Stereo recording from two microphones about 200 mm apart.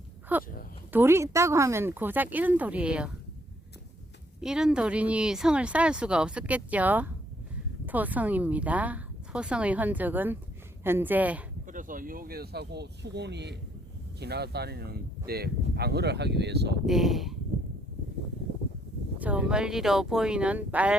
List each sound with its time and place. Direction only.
0.3 s speech: 10° right (ahead or behind)
4.4 s speech: 5° right (ahead or behind)
11.6 s speech: 40° right (ahead or behind); by 16.7 s 55° right (ahead or behind)
16.8 s speech: centre (ahead or behind)
19.2 s speech: 5° right (ahead or behind)